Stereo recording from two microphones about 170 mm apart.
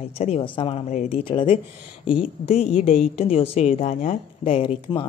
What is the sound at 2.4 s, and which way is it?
Speech, 40° left (ahead or behind).